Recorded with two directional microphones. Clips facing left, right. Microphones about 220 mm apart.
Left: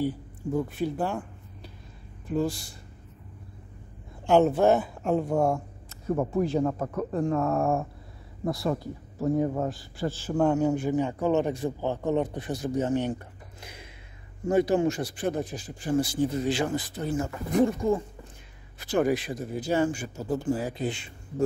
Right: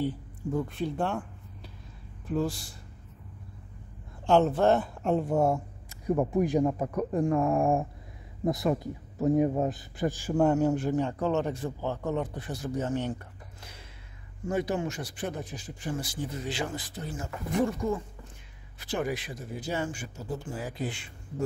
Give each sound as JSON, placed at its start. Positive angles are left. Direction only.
{"t": 0.0, "sound": "speech", "side_deg": 5}
{"t": 4.3, "sound": "speech", "side_deg": 10}
{"t": 14.5, "sound": "speech", "side_deg": 30}
{"t": 18.8, "sound": "speech", "side_deg": 40}
{"t": 20.6, "sound": "speech", "side_deg": 20}